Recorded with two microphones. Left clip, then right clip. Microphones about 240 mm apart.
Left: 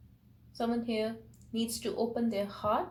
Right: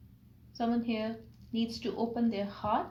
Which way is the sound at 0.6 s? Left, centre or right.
Left.